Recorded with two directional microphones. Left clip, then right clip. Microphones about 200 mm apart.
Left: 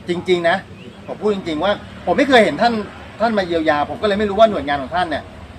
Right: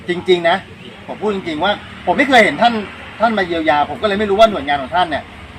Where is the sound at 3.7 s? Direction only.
20° left (ahead or behind).